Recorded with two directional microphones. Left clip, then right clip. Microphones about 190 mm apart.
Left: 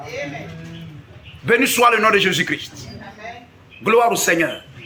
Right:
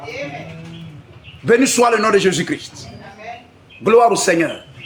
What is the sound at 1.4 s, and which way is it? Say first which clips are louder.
A man's voice: right 1 dB; 50° right (ahead or behind).